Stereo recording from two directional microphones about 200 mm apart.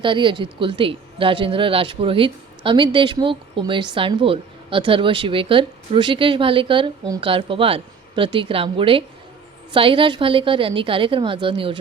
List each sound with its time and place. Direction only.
0.0 s speech: 25° right (ahead or behind)